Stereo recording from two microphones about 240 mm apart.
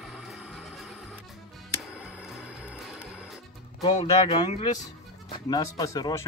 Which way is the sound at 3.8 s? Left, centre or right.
Left.